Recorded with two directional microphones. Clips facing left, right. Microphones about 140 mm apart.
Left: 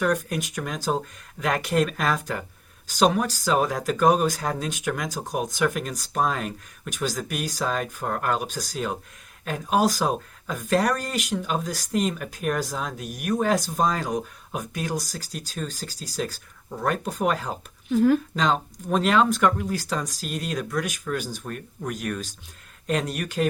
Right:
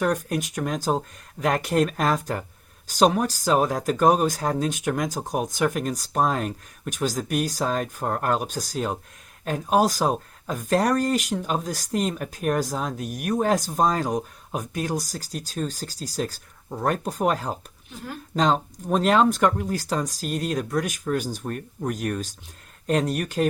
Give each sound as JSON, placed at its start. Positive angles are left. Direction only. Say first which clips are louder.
{"t": 0.0, "sound": "speech", "louder": "even", "side_deg": -35}
{"t": 17.9, "sound": "speech", "louder": "left 18 dB", "side_deg": 90}
{"t": 18.3, "sound": "speech", "louder": "right 2 dB", "side_deg": -35}